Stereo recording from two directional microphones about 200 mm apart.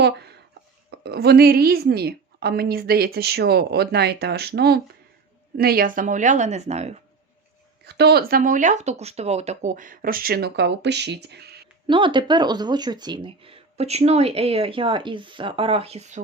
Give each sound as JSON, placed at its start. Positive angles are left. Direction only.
{"t": 0.0, "sound": "a sound", "side_deg": -55}
{"t": 0.9, "sound": "a woman's voice", "side_deg": -55}
{"t": 7.9, "sound": "a woman's voice", "side_deg": -55}
{"t": 11.9, "sound": "speech", "side_deg": -25}